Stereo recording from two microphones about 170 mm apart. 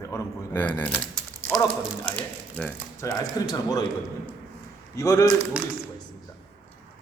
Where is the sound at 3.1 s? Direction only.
20° left (ahead or behind).